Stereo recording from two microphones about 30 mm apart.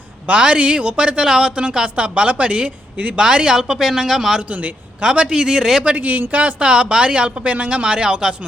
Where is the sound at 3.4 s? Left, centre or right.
Centre.